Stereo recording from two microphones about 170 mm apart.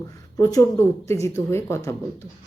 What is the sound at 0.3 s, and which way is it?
A woman's voice, 15° left (ahead or behind).